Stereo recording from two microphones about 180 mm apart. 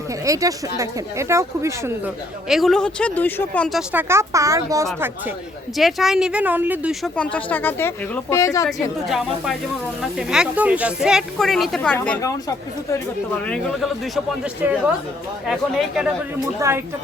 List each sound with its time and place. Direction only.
0.1 s speech: 20° right (ahead or behind)
2.5 s speech: centre (ahead or behind)
3.9 s speech: 15° right (ahead or behind)
5.7 s speech: centre (ahead or behind)
7.0 s speech: 5° left (ahead or behind)
8.6 s speech: centre (ahead or behind)
16.6 s speech: 15° right (ahead or behind)